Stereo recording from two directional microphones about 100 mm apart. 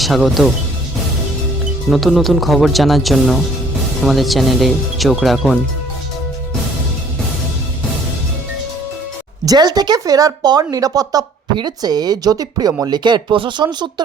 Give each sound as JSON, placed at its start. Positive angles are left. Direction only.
{"t": 0.0, "sound": "speech", "side_deg": 0}
{"t": 1.9, "sound": "speech", "side_deg": 0}
{"t": 9.5, "sound": "speech", "side_deg": -40}